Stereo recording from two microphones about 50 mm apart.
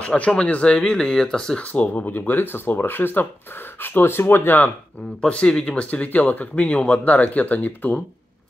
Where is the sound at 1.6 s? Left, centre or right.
Left.